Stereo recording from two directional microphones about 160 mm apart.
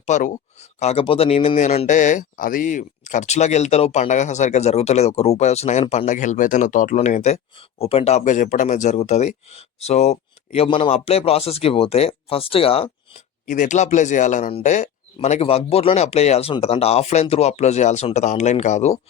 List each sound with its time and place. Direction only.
0.0 s speech: 50° left (ahead or behind)
0.8 s speech: 40° left (ahead or behind)
13.5 s speech: 50° left (ahead or behind)